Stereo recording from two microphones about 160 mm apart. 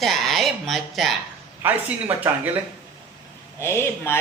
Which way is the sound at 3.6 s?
15° left (ahead or behind).